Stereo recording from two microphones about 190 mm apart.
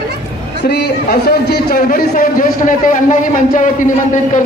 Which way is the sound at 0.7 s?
60° left (ahead or behind).